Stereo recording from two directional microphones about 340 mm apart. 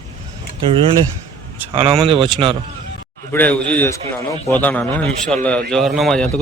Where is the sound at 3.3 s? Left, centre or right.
Centre.